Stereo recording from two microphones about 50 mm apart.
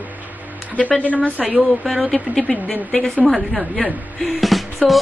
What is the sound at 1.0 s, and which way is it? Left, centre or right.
Speech, left.